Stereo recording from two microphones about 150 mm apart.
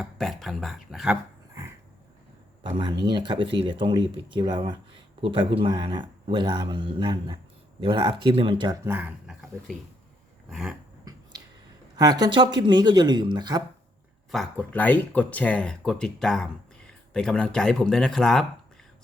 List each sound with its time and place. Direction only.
0.0 s speech: centre (ahead or behind)
2.6 s speech: 30° right (ahead or behind)
8.8 s speech: 15° right (ahead or behind)
10.5 s speech: 5° right (ahead or behind)
11.0 s finger snapping: 25° right (ahead or behind)
11.9 s speech: 25° right (ahead or behind)
14.3 s speech: 5° left (ahead or behind)